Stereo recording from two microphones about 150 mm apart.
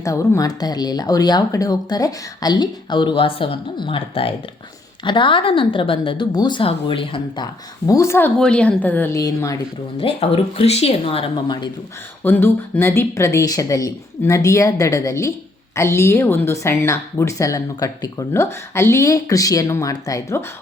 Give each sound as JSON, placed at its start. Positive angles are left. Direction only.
{"t": 0.0, "sound": "speech", "side_deg": 20}
{"t": 8.4, "sound": "speech", "side_deg": 5}
{"t": 10.0, "sound": "speech", "side_deg": 40}
{"t": 12.2, "sound": "speech", "side_deg": 15}